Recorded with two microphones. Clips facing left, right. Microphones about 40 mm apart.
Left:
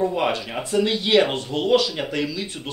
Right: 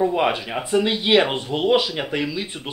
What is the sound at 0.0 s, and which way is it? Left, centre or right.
Speech, centre.